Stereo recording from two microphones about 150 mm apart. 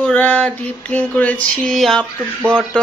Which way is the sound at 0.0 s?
10° left (ahead or behind).